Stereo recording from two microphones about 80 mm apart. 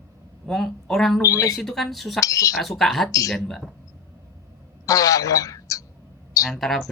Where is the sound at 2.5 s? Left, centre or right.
Centre.